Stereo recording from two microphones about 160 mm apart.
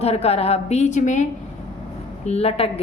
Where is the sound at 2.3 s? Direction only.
40° left (ahead or behind).